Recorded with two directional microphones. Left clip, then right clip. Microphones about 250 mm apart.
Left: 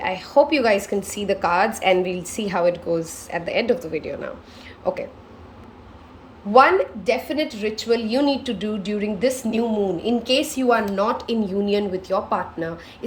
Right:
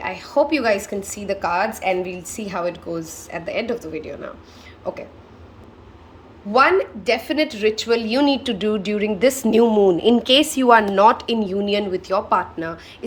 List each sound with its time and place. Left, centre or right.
0.0 s a woman's voice: centre
6.5 s a woman's voice: centre